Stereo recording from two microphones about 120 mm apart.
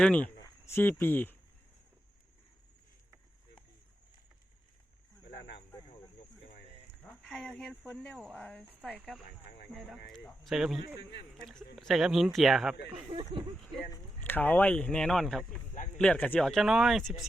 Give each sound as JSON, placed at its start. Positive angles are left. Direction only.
{"t": 0.0, "sound": "speech", "side_deg": 10}
{"t": 7.0, "sound": "speech", "side_deg": 0}
{"t": 12.9, "sound": "speech", "side_deg": -50}
{"t": 14.3, "sound": "speech", "side_deg": 15}
{"t": 16.4, "sound": "speech", "side_deg": 0}